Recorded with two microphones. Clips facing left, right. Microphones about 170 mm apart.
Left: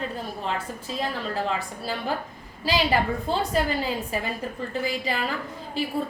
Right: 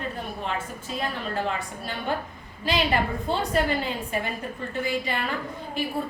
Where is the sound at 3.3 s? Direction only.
35° left (ahead or behind).